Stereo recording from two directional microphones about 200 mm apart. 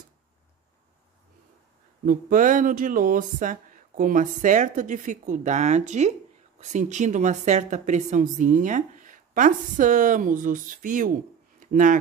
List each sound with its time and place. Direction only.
2.0 s speech: 40° right (ahead or behind)